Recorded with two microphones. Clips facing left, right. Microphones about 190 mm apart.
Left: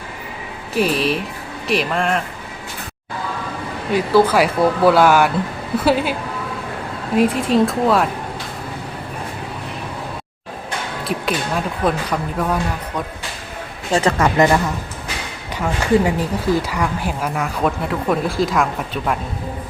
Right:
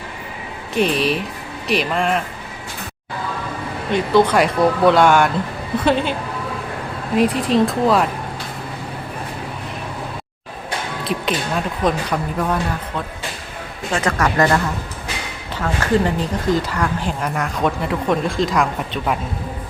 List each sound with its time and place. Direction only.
0.7 s speech: 5° left (ahead or behind)
3.9 s a woman's voice: 5° left (ahead or behind)
7.2 s speech: centre (ahead or behind)
11.3 s speech: 5° left (ahead or behind)
13.9 s speech: 30° left (ahead or behind)
14.3 s a woman's voice: 15° left (ahead or behind); by 19.2 s centre (ahead or behind)